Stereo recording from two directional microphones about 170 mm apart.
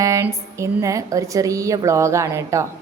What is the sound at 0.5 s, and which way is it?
A woman's voice, 20° right (ahead or behind).